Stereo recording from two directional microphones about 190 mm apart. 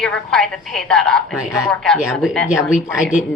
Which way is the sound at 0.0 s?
Centre (ahead or behind).